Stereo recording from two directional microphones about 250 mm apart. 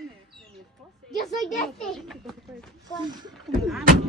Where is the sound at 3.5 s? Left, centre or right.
Centre.